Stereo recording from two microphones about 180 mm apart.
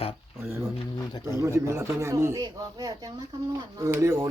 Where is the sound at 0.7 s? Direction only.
25° left (ahead or behind).